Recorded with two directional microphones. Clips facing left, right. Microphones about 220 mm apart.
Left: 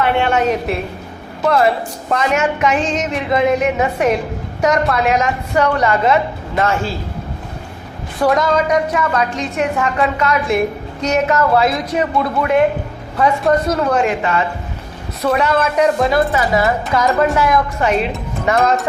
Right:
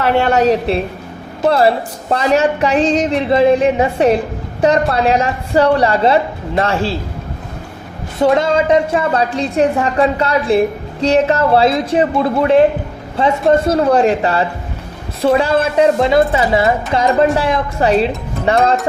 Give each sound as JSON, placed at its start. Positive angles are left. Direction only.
{"t": 0.0, "sound": "speech", "side_deg": -40}
{"t": 8.2, "sound": "speech", "side_deg": -30}